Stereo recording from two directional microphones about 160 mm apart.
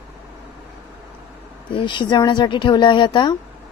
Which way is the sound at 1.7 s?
30° left (ahead or behind).